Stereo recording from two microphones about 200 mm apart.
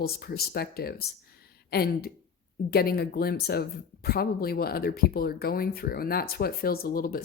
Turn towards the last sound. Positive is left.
turn(degrees=45)  # may be behind; listen again after turning